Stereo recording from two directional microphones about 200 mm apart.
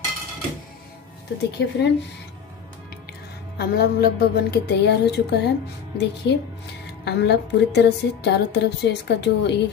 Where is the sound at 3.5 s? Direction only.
55° left (ahead or behind).